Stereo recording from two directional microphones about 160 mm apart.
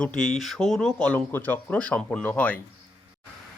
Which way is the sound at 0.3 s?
Centre (ahead or behind).